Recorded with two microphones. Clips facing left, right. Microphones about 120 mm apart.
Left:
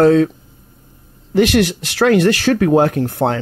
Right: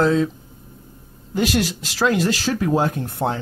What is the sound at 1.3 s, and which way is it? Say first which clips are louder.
Speech: left 7 dB; 70° left (ahead or behind).